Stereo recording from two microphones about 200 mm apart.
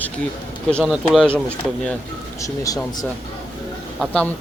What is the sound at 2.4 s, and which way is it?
A man's voice, 15° left (ahead or behind).